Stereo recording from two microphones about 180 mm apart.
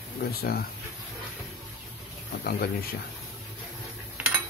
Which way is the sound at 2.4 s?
55° left (ahead or behind).